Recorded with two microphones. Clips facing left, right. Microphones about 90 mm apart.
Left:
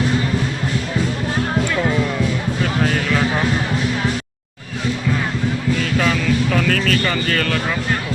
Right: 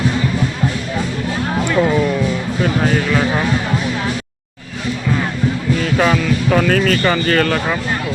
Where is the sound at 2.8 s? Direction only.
10° right (ahead or behind).